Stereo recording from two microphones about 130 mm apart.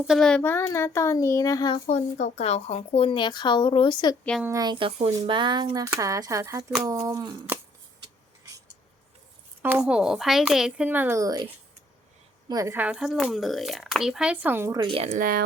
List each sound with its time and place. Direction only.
0.1 s speech: 5° left (ahead or behind)
0.7 s speech: 20° left (ahead or behind)
1.9 s a woman's voice: 55° left (ahead or behind); by 4.2 s 35° left (ahead or behind)
4.4 s speech: 30° right (ahead or behind)
9.6 s a sound: 15° right (ahead or behind)
9.8 s speech: 5° right (ahead or behind)
11.2 s speech: 30° right (ahead or behind)
12.5 s a woman's voice: 25° right (ahead or behind)
12.7 s speech: 10° right (ahead or behind)
14.7 s a woman's voice: 40° right (ahead or behind)